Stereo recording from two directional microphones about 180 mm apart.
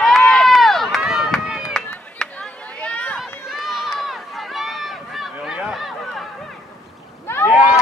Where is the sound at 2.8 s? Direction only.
10° left (ahead or behind).